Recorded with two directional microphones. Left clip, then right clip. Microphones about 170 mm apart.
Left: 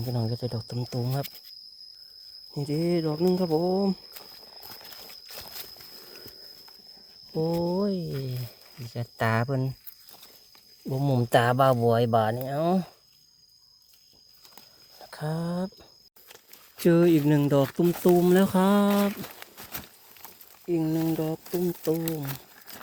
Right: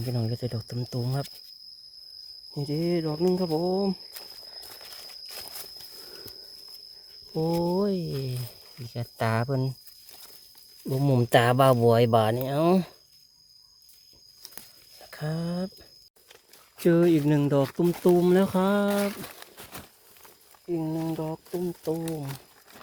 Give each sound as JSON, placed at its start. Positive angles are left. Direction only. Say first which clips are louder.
{"t": 0.0, "sound": "speech", "louder": "even", "side_deg": -5}
{"t": 2.6, "sound": "speech", "louder": "left 1 dB", "side_deg": 10}
{"t": 4.1, "sound": "a sound", "louder": "right 3 dB", "side_deg": 5}
{"t": 5.2, "sound": "walk", "louder": "right 1 dB", "side_deg": 15}
{"t": 7.3, "sound": "speech", "louder": "right 1 dB", "side_deg": 0}
{"t": 10.8, "sound": "speech", "louder": "right 2 dB", "side_deg": -10}
{"t": 14.9, "sound": "speech", "louder": "left 1 dB", "side_deg": -5}
{"t": 16.7, "sound": "speech", "louder": "left 1 dB", "side_deg": 10}
{"t": 20.7, "sound": "speech", "louder": "left 3 dB", "side_deg": 30}
{"t": 21.9, "sound": "speech", "louder": "left 2 dB", "side_deg": 20}